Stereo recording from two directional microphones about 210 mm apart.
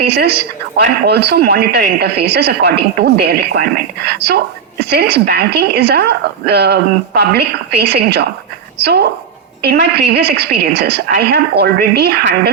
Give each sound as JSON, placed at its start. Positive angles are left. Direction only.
{"t": 0.8, "sound": "speech", "side_deg": -50}